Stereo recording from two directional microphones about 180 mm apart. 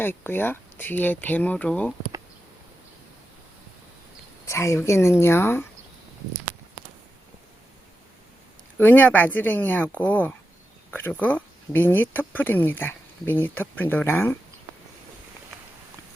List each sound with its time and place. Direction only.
0.0 s speech: 10° left (ahead or behind)
4.4 s speech: 15° left (ahead or behind)
8.8 s speech: 10° left (ahead or behind)